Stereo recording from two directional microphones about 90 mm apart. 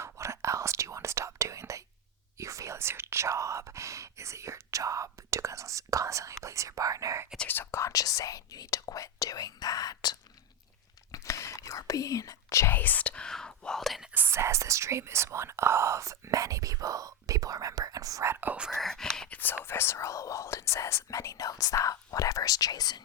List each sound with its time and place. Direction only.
0.0 s whispering: 30° right (ahead or behind)
7.3 s whispering: 20° left (ahead or behind); by 10.2 s 45° left (ahead or behind)
11.1 s whispering: 35° left (ahead or behind)
12.7 s whispering: 20° left (ahead or behind); by 14.1 s centre (ahead or behind)
14.1 s whispering: 25° right (ahead or behind)
18.7 s whispering: 5° left (ahead or behind)
19.3 s whispering: 20° left (ahead or behind); by 23.0 s 50° left (ahead or behind)